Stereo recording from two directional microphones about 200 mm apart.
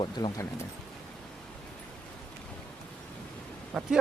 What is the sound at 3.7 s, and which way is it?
Speech, centre (ahead or behind).